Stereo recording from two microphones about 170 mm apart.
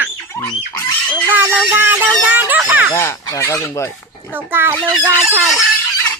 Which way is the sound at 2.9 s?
15° left (ahead or behind).